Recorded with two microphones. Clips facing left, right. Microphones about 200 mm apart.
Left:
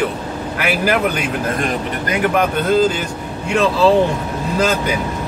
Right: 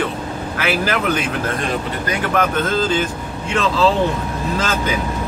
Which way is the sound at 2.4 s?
15° left (ahead or behind).